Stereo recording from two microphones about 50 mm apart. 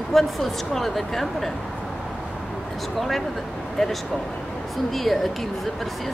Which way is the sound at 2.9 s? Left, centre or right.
Centre.